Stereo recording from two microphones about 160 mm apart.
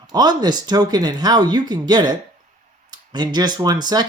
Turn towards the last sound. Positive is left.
turn(degrees=-25)  # may be behind; listen again after turning